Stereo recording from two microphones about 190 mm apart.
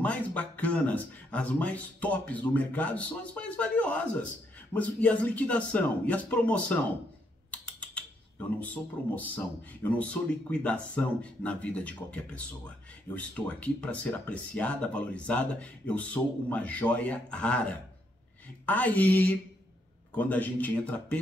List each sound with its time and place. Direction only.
0.0 s speech: 5° left (ahead or behind)